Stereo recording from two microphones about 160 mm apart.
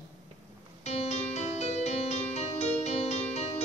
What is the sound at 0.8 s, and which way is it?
Music, 45° left (ahead or behind).